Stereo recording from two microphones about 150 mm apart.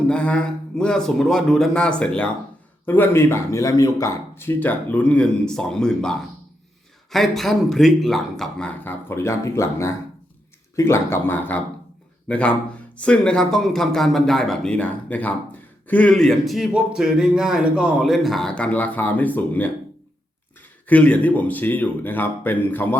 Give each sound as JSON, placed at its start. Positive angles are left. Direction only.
{"t": 0.1, "sound": "speech", "side_deg": 5}
{"t": 20.8, "sound": "speech", "side_deg": 10}